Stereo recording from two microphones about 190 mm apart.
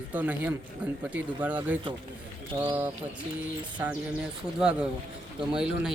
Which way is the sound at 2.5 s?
20° right (ahead or behind).